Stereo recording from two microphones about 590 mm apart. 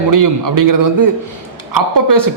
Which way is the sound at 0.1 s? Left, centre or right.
Right.